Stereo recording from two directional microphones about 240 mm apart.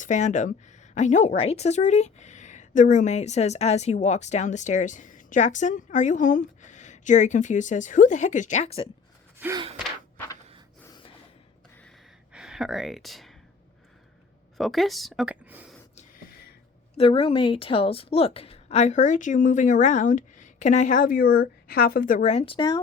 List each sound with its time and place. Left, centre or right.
0.0 s a woman's voice: left
9.4 s gasp: centre
12.3 s speech: centre
14.6 s a woman's voice: centre
16.0 s gasp: left
17.0 s a woman's voice: left